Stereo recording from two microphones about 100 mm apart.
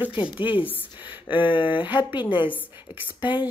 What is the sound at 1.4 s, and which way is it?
Speech, 55° left (ahead or behind).